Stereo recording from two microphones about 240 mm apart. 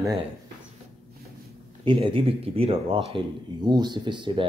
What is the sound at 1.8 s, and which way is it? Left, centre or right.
Speech, right.